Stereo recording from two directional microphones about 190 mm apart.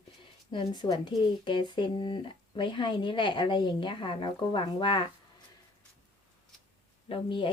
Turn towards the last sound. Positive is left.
turn(degrees=25)  # may be behind; listen again after turning